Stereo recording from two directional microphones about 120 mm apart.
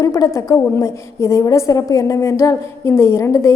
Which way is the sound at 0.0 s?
25° left (ahead or behind).